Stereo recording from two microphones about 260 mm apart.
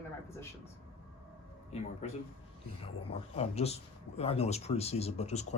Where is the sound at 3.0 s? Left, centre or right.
Left.